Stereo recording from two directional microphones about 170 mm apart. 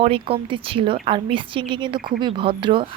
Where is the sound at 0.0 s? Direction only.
35° right (ahead or behind).